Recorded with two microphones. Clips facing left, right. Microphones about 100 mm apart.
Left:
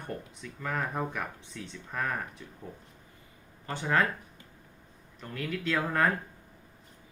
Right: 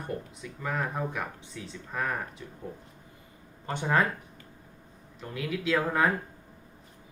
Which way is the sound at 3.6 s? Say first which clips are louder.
Right 2 dB; 20° right (ahead or behind).